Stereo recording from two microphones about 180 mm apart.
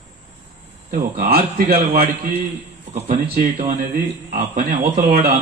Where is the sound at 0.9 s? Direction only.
55° right (ahead or behind).